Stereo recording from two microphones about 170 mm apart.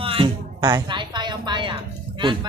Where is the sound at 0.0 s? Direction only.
30° right (ahead or behind).